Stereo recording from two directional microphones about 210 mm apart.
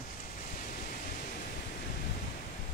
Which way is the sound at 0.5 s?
40° left (ahead or behind).